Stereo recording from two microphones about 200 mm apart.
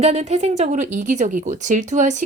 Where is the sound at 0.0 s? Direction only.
35° right (ahead or behind).